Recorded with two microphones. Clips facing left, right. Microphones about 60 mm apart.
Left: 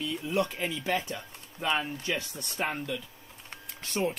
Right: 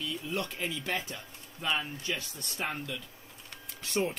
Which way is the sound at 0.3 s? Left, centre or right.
Centre.